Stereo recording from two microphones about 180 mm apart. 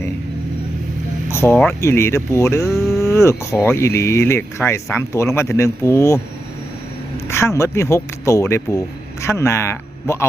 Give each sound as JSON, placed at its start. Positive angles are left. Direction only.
{"t": 1.3, "sound": "speech", "side_deg": 15}
{"t": 7.3, "sound": "speech", "side_deg": 15}